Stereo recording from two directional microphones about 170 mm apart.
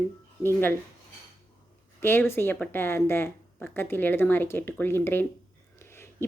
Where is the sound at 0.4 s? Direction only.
10° left (ahead or behind).